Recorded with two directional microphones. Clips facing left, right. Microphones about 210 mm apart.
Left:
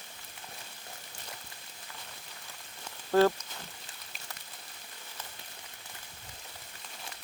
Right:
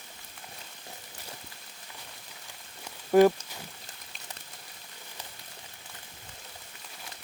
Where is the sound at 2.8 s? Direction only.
15° right (ahead or behind).